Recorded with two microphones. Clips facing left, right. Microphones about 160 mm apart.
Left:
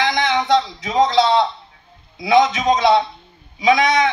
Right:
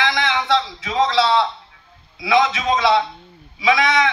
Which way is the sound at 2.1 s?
45° left (ahead or behind).